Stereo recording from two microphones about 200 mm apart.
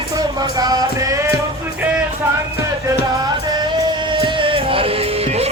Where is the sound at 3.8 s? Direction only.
25° right (ahead or behind).